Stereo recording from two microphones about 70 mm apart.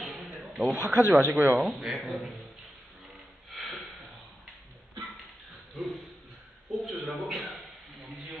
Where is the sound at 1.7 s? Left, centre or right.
Centre.